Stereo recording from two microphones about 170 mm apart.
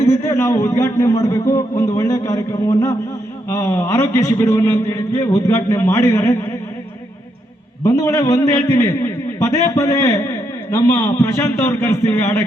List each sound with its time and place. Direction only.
0.0 s a man's voice: 15° left (ahead or behind)
7.9 s a man's voice: 20° left (ahead or behind)